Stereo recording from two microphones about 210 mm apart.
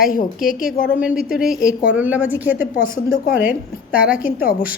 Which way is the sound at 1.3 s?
Centre (ahead or behind).